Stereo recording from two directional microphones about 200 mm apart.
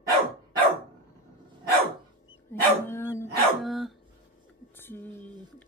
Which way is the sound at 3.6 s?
Centre (ahead or behind).